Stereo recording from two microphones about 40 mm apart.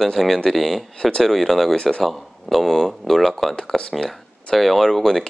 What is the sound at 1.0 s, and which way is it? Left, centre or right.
Speech, left.